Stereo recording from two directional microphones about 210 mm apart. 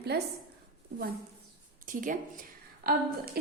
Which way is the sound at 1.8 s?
40° right (ahead or behind).